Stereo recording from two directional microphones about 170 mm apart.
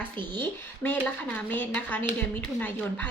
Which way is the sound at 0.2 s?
10° left (ahead or behind).